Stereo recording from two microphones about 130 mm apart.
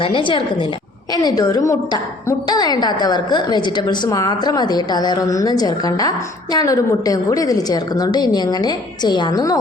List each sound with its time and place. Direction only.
0.0 s a woman's voice: 40° left (ahead or behind)